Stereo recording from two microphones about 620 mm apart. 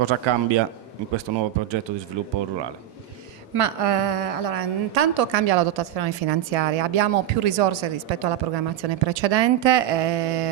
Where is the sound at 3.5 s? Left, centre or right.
Right.